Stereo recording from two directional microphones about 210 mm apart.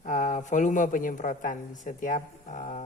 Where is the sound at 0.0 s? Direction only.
35° left (ahead or behind).